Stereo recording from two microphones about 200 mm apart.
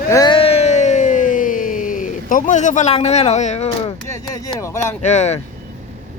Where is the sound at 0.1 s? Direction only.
20° left (ahead or behind).